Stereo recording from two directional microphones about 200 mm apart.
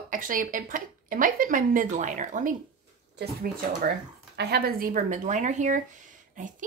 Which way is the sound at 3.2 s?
50° right (ahead or behind).